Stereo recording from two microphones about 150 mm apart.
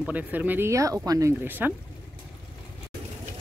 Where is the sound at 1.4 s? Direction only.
10° right (ahead or behind).